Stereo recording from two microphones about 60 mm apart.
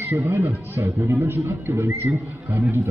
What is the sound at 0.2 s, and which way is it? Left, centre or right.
Speech, right.